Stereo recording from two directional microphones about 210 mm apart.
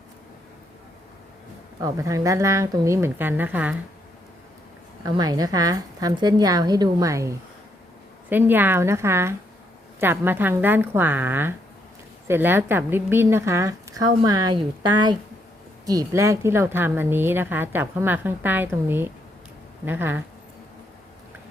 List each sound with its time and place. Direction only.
1.8 s a woman's voice: 15° right (ahead or behind)
5.0 s a woman's voice: 20° right (ahead or behind)